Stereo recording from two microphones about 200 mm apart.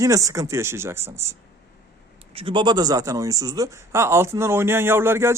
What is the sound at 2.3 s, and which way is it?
Speech, 25° right (ahead or behind).